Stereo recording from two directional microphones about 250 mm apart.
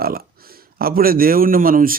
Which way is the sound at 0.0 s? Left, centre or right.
Right.